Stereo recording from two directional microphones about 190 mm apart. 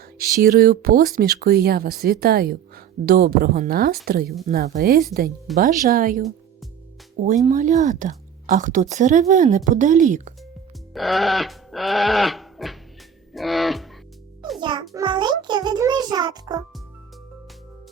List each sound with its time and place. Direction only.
0.2 s a woman's voice: 50° right (ahead or behind)
7.3 s a woman's voice: 40° right (ahead or behind)
10.9 s goat: centre (ahead or behind)
14.6 s a child's voice: 25° right (ahead or behind)